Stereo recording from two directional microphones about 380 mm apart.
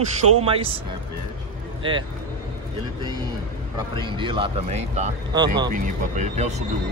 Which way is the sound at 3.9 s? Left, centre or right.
Centre.